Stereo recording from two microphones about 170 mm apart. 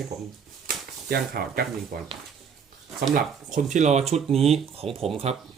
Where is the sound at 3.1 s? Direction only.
50° right (ahead or behind).